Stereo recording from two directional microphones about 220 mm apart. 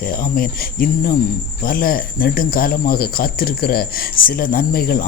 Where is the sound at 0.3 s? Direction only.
40° left (ahead or behind).